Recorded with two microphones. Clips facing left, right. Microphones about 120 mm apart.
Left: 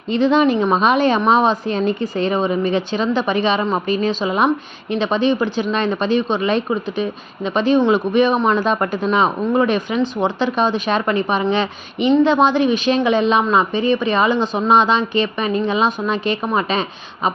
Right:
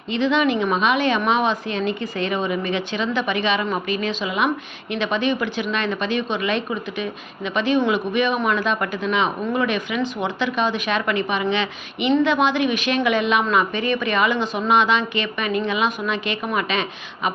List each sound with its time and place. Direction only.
0.1 s a woman's voice: 40° left (ahead or behind)